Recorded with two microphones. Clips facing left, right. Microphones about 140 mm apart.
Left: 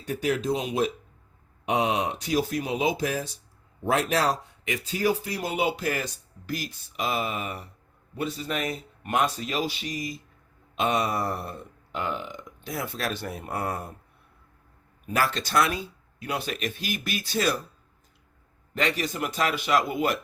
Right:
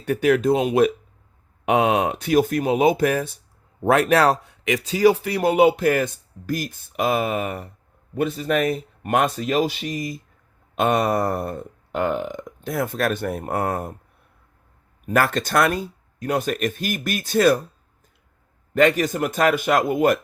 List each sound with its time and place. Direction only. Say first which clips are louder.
0.0 s speech: right 8 dB; 65° right (ahead or behind)
15.0 s speech: right 6 dB; 50° right (ahead or behind)
18.7 s speech: right 10 dB; 50° right (ahead or behind)